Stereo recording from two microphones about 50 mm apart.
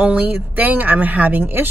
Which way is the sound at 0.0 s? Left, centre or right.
Right.